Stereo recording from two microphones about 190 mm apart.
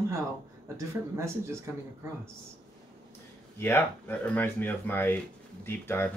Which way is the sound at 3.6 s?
10° left (ahead or behind).